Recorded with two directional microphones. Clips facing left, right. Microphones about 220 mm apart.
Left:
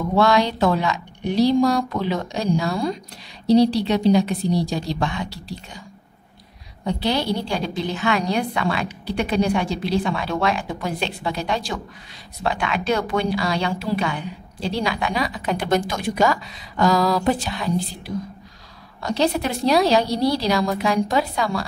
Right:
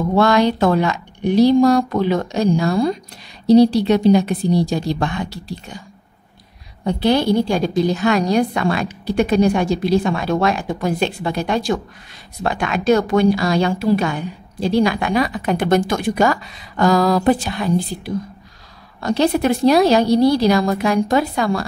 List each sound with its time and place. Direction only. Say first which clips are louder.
0.2 s a woman's voice: right 3 dB; 50° right (ahead or behind)
6.8 s a woman's voice: right 6 dB; 50° right (ahead or behind)
18.9 s a woman's voice: right 4 dB; 50° right (ahead or behind)